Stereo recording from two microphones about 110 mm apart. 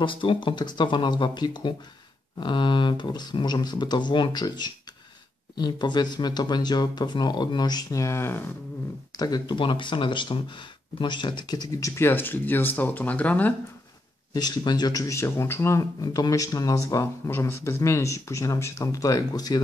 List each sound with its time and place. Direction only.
0.0 s speech: 50° left (ahead or behind); by 8.4 s 25° left (ahead or behind)
9.1 s speech: 35° left (ahead or behind); by 13.6 s 15° left (ahead or behind)
14.3 s speech: 35° left (ahead or behind)